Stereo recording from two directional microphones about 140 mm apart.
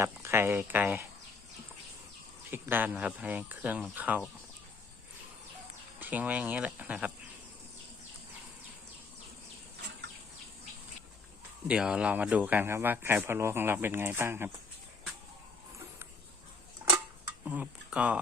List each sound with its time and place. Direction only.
0.0 s speech: 20° right (ahead or behind)
2.5 s speech: 15° right (ahead or behind)
6.0 s speech: 10° right (ahead or behind)
11.7 s speech: 5° right (ahead or behind)
17.4 s speech: 10° right (ahead or behind)